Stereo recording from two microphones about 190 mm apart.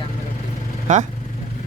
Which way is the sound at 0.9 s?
40° right (ahead or behind).